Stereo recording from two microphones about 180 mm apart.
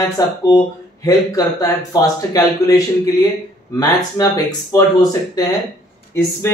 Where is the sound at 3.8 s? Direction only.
20° left (ahead or behind).